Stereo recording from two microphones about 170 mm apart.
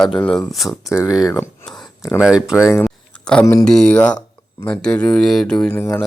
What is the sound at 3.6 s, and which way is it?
Speech, 5° left (ahead or behind).